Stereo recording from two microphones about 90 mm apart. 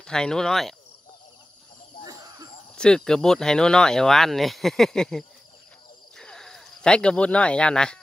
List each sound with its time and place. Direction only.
0.0 s speech: 10° left (ahead or behind)
2.0 s a sound: 40° right (ahead or behind)
2.7 s speech: 10° left (ahead or behind)